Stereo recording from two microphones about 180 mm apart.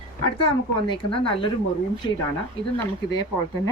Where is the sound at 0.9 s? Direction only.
30° left (ahead or behind).